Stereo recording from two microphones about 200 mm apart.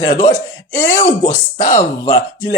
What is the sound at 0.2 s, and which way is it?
Speech, 10° left (ahead or behind).